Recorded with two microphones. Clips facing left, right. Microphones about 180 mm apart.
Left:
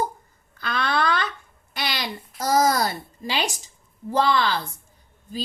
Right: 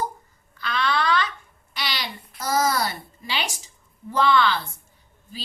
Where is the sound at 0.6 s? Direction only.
50° left (ahead or behind).